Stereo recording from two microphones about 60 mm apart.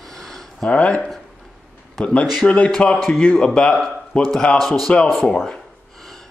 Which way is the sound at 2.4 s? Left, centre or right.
Left.